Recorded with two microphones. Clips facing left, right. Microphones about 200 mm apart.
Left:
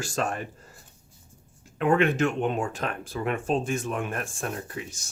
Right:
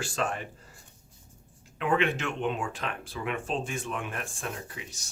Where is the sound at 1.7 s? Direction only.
45° left (ahead or behind).